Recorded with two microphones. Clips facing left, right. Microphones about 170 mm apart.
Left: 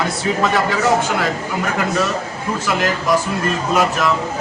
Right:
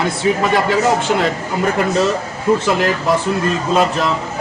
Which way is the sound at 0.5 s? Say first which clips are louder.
Right 2 dB; 20° right (ahead or behind).